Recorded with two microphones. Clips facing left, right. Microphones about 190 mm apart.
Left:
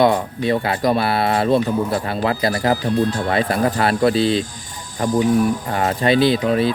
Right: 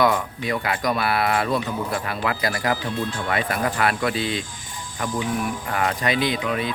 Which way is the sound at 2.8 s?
40° left (ahead or behind).